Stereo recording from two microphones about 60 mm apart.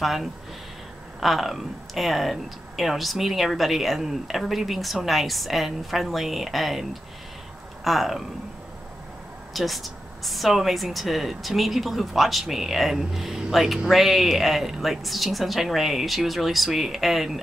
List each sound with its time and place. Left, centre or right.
0.0 s speech: centre
9.5 s speech: centre